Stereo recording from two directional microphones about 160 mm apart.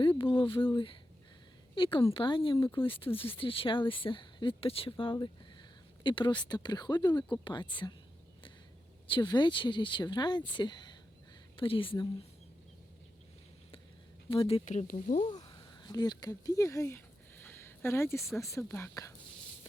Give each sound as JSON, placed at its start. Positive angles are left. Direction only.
{"t": 0.0, "sound": "speech", "side_deg": 30}
{"t": 9.0, "sound": "speech", "side_deg": 30}
{"t": 14.3, "sound": "speech", "side_deg": 35}
{"t": 14.7, "sound": "speech", "side_deg": 50}
{"t": 15.2, "sound": "a sound", "side_deg": 30}
{"t": 18.4, "sound": "speech", "side_deg": 15}